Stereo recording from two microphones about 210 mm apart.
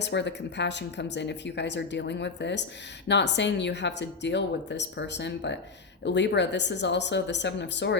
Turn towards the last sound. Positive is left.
turn(degrees=55)  # may be behind; listen again after turning